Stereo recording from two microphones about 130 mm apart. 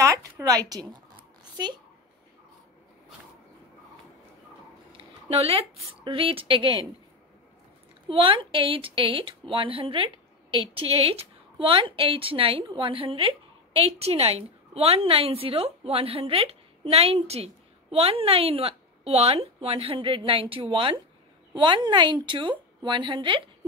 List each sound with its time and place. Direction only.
0.0 s a woman's voice: 25° right (ahead or behind)
4.9 s speech: 50° right (ahead or behind)
8.1 s a woman's voice: 45° right (ahead or behind)